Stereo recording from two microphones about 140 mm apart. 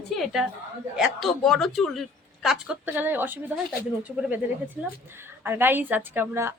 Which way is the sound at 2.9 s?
15° right (ahead or behind).